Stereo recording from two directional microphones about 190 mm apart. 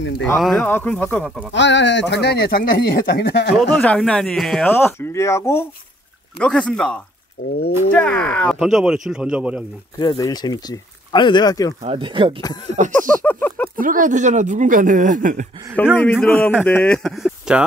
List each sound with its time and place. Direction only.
0.2 s speech: centre (ahead or behind)
1.5 s speech: 70° left (ahead or behind)
3.5 s speech: centre (ahead or behind)
4.7 s speech: 10° left (ahead or behind)
7.4 s speech: 90° left
7.9 s speech: 5° left (ahead or behind)
9.9 s speech: 20° left (ahead or behind)
11.8 s speech: 30° right (ahead or behind)
12.6 s a sound: 40° right (ahead or behind)
13.2 s a sound: 10° left (ahead or behind)
13.7 s speech: 45° right (ahead or behind)
16.0 s speech: 10° left (ahead or behind)